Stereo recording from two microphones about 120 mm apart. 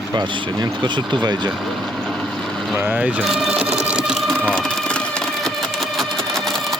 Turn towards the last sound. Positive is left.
turn(degrees=5)  # may be behind; listen again after turning